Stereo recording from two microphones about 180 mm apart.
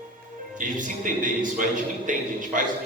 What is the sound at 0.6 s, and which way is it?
A man's voice, 45° right (ahead or behind).